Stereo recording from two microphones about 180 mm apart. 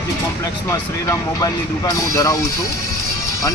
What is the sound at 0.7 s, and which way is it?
Speech, 15° left (ahead or behind).